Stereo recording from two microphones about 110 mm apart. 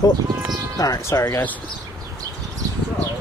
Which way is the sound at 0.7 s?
35° left (ahead or behind).